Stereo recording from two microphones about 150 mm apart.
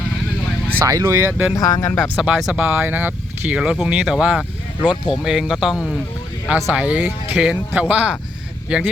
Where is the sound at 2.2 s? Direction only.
Centre (ahead or behind).